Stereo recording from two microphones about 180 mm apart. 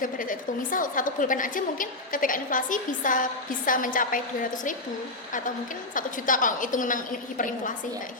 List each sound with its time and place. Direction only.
0.0 s a woman's voice: 50° left (ahead or behind)
5.9 s a woman's voice: 50° left (ahead or behind)